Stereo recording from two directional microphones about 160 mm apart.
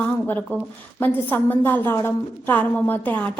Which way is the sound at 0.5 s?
10° left (ahead or behind).